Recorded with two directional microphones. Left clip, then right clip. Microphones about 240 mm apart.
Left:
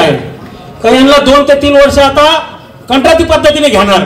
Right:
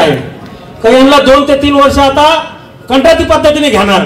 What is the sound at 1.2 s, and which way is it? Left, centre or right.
Speech, left.